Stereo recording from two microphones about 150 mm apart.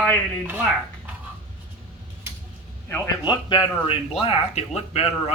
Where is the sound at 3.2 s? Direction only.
35° left (ahead or behind).